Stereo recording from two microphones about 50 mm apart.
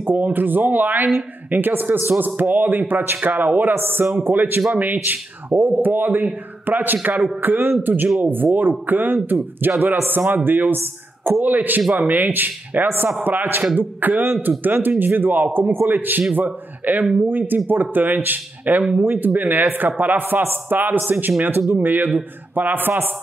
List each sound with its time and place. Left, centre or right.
0.0 s a man's voice: right
19.1 s speech: right